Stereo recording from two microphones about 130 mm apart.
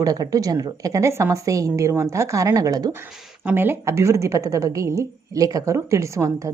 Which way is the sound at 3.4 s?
15° right (ahead or behind).